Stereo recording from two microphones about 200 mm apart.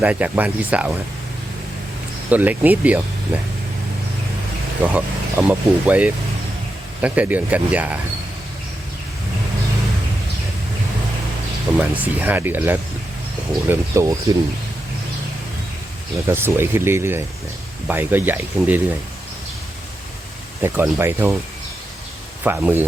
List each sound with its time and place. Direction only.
0.0 s speech: 5° right (ahead or behind)
2.3 s speech: 10° right (ahead or behind)
4.8 s speech: 5° right (ahead or behind)
11.8 s speech: 10° right (ahead or behind)
16.2 s speech: 10° right (ahead or behind)
20.6 s speech: 15° right (ahead or behind)
22.4 s speech: 10° right (ahead or behind)